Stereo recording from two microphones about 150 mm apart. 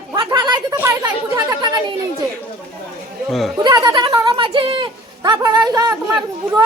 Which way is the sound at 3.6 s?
25° right (ahead or behind).